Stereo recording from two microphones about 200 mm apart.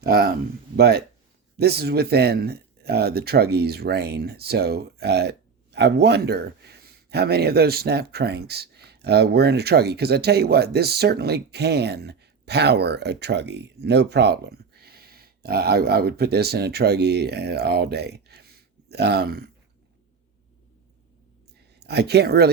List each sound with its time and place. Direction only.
0.0 s speech: 50° right (ahead or behind)
21.8 s speech: 55° right (ahead or behind)